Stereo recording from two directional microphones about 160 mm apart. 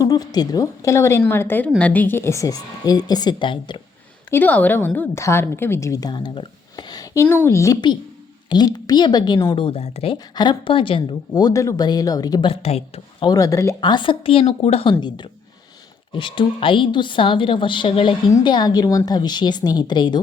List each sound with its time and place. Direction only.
0.0 s a woman's voice: 25° left (ahead or behind)
4.3 s a woman's voice: 10° left (ahead or behind); by 10.2 s 40° left (ahead or behind)
10.3 s a woman's voice: 25° left (ahead or behind)
13.2 s a woman's voice: 20° left (ahead or behind)